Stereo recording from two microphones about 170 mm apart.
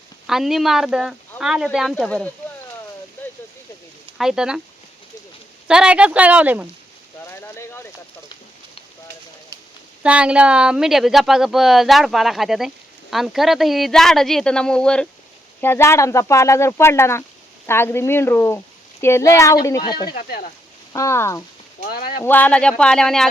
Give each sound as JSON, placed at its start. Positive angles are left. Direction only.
{"t": 0.3, "sound": "speech", "side_deg": 0}
{"t": 4.2, "sound": "speech", "side_deg": -5}
{"t": 5.6, "sound": "speech", "side_deg": -5}
{"t": 7.4, "sound": "a sound", "side_deg": 15}
{"t": 10.0, "sound": "speech", "side_deg": -5}
{"t": 21.8, "sound": "speech", "side_deg": 65}
{"t": 22.2, "sound": "speech", "side_deg": 10}